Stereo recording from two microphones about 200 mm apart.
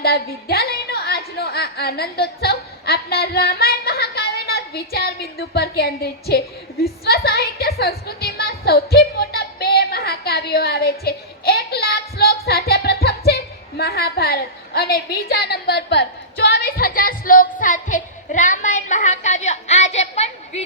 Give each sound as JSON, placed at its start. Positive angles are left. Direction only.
{"t": 0.0, "sound": "a woman's voice", "side_deg": 50}